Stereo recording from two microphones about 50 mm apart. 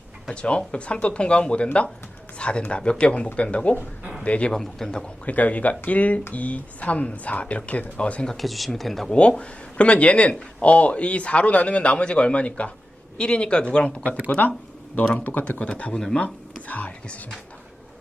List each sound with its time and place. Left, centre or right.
0.3 s a man's voice: left
4.5 s a man's voice: centre
5.2 s speech: left
8.3 s speech: centre
9.4 s speech: left